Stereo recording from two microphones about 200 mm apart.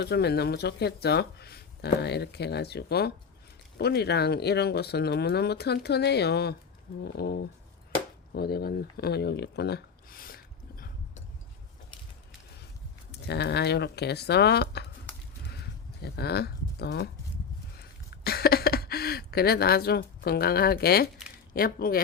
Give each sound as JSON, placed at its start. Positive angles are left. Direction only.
{"t": 0.0, "sound": "speech", "side_deg": 55}
{"t": 8.3, "sound": "a sound", "side_deg": 50}
{"t": 13.1, "sound": "speech", "side_deg": 55}
{"t": 16.0, "sound": "speech", "side_deg": 55}
{"t": 18.2, "sound": "a sound", "side_deg": 50}
{"t": 21.5, "sound": "speech", "side_deg": 45}